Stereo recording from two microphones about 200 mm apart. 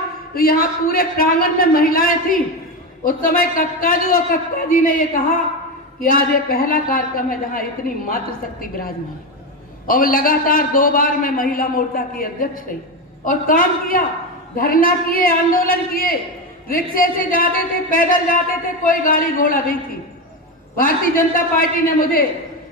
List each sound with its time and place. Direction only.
0.3 s a woman's voice: 50° left (ahead or behind)